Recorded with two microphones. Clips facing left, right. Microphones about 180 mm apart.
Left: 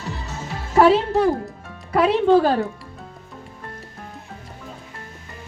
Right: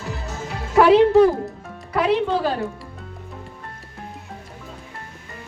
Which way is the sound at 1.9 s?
50° left (ahead or behind).